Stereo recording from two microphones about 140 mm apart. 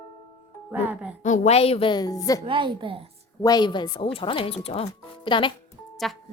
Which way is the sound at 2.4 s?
35° right (ahead or behind).